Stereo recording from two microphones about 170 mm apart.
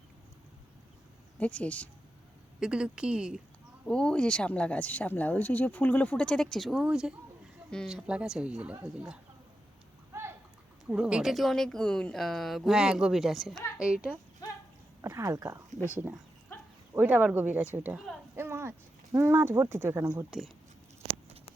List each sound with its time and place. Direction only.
1.4 s speech: 10° left (ahead or behind)
2.6 s a woman's voice: 5° right (ahead or behind)
8.7 s speech: 20° right (ahead or behind)
10.1 s a sound: 15° right (ahead or behind)
10.8 s a woman's voice: 5° right (ahead or behind)
15.0 s speech: 15° right (ahead or behind)
18.3 s a sound: 15° right (ahead or behind)
19.1 s speech: 15° right (ahead or behind)